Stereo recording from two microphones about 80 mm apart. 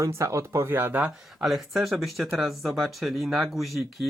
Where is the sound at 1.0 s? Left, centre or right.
Centre.